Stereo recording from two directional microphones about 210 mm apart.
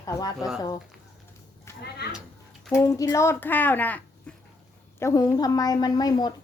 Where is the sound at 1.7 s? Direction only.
10° left (ahead or behind).